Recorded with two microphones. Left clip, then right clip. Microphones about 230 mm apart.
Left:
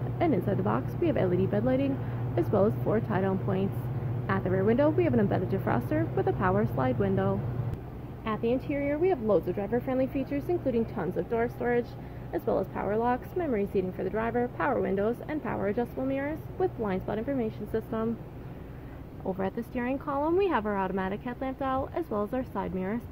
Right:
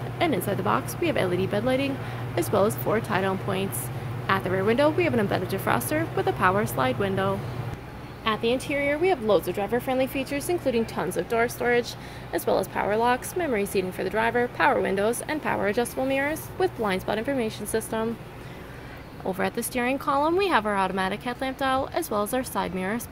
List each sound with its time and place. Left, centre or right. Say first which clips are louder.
0.2 s speech: right 3 dB; centre
19.2 s speech: right 5 dB; right